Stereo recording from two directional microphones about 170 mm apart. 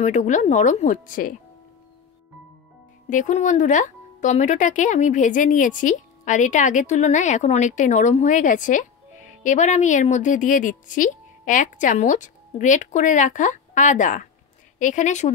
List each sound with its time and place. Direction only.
0.0 s speech: 45° left (ahead or behind)
3.1 s speech: 45° left (ahead or behind)